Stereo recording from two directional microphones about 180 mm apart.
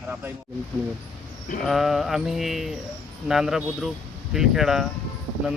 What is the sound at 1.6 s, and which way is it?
Bird, centre (ahead or behind).